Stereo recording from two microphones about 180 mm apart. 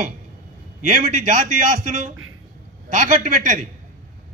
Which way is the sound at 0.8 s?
45° right (ahead or behind).